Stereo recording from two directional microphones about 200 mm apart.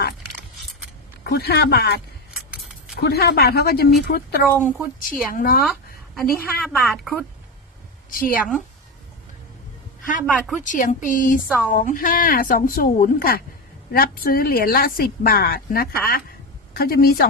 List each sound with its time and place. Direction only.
1.2 s a woman's voice: 55° left (ahead or behind)
2.6 s keys jangling: centre (ahead or behind)
3.0 s a woman's voice: 55° left (ahead or behind)
6.1 s a woman's voice: centre (ahead or behind)
8.1 s a woman's voice: 45° left (ahead or behind)
8.4 s a woman's voice: 5° right (ahead or behind)
10.2 s a woman's voice: centre (ahead or behind)
10.6 s speech: 40° left (ahead or behind)
11.4 s a woman's voice: 5° right (ahead or behind)
11.7 s a woman's voice: 45° left (ahead or behind)